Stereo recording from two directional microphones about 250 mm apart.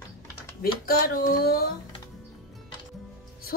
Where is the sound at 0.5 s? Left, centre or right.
Left.